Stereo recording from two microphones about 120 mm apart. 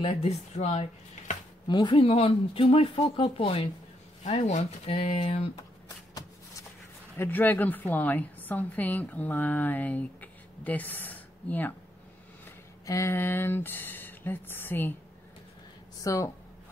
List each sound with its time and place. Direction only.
0.0 s speech: 55° left (ahead or behind); by 1.4 s 80° left
1.7 s speech: 40° left (ahead or behind)
4.2 s speech: 65° left (ahead or behind)
7.2 s a woman's voice: 15° left (ahead or behind)
12.8 s a woman's voice: 25° left (ahead or behind)
16.0 s speech: 25° left (ahead or behind)